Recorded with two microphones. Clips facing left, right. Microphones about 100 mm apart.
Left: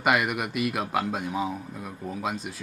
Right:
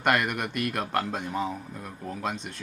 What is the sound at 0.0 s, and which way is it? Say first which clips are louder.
A man's voice: left 1 dB; 5° left (ahead or behind).